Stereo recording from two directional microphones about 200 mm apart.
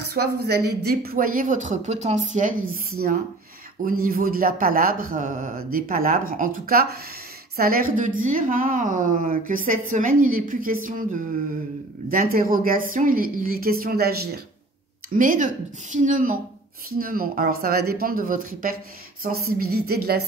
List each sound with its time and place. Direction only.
0.0 s speech: 55° right (ahead or behind)
4.0 s speech: 45° right (ahead or behind)
12.1 s speech: 45° right (ahead or behind)
15.1 s speech: 40° right (ahead or behind)